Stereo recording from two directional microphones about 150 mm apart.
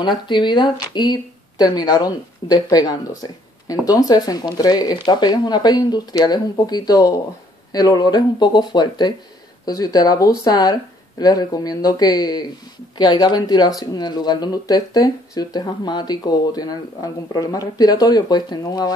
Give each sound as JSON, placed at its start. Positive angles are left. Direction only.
{"t": 0.0, "sound": "speech", "side_deg": 30}